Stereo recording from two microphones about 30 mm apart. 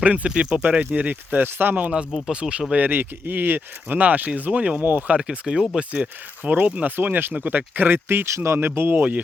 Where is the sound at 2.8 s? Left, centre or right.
Right.